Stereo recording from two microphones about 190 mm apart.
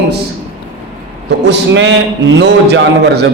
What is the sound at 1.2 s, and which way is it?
A man's voice, 65° right (ahead or behind).